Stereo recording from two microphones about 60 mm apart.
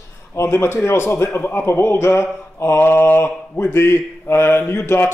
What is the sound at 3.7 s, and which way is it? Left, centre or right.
Speech, left.